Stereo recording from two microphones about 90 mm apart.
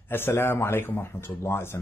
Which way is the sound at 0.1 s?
25° left (ahead or behind).